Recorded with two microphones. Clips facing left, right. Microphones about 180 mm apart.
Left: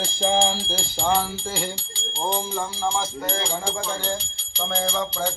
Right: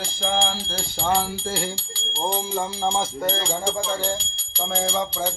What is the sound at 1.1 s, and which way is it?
Rattle, centre (ahead or behind).